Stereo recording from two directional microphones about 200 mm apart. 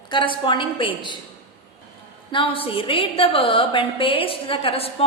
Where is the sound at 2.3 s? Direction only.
25° left (ahead or behind).